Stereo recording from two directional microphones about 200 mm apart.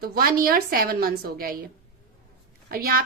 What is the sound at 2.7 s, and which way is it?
Speech, 45° right (ahead or behind).